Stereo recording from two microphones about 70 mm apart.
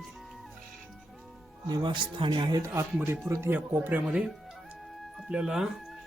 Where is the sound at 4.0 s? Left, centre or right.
Centre.